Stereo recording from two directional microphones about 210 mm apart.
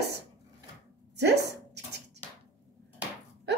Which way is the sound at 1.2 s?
55° right (ahead or behind).